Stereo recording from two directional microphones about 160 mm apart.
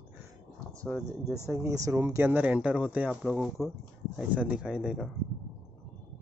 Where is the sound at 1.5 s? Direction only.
20° right (ahead or behind); by 5.1 s centre (ahead or behind).